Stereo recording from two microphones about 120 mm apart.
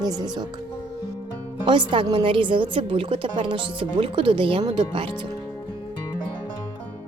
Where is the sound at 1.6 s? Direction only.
40° right (ahead or behind).